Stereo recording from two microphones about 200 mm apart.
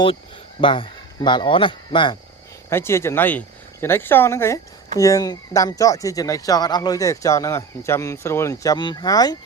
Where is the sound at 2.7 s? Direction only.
10° left (ahead or behind).